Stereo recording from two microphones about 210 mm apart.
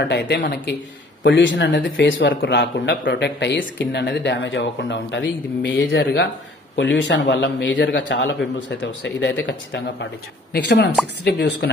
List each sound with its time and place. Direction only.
0.0 s speech: 55° left (ahead or behind)